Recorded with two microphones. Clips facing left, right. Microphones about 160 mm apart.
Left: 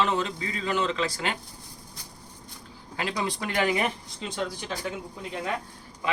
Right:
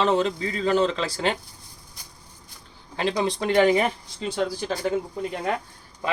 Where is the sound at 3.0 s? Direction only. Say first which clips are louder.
Right 6 dB; 25° right (ahead or behind).